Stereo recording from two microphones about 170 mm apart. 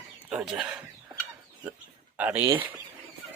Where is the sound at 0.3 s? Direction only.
5° right (ahead or behind).